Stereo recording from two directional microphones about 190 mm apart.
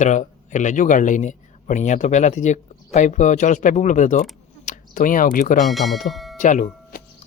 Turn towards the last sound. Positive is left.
turn(degrees=40)  # may be behind; listen again after turning